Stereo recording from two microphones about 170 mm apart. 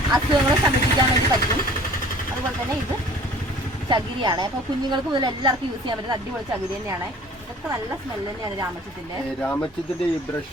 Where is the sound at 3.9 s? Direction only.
25° right (ahead or behind).